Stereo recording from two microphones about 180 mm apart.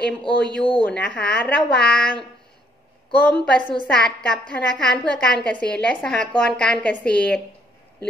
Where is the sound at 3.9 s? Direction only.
5° left (ahead or behind).